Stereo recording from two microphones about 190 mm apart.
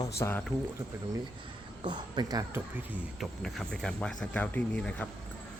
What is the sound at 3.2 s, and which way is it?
Speech, centre (ahead or behind).